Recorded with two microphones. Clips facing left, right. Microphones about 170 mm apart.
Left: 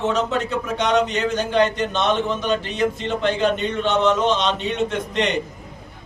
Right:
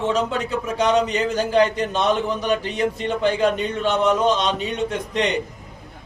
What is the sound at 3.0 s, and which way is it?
A man's voice, 10° right (ahead or behind).